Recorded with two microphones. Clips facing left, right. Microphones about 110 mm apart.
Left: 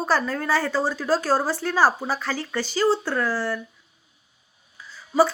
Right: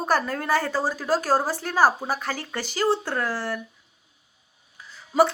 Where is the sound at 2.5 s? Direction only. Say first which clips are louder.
Left 2 dB; 55° right (ahead or behind).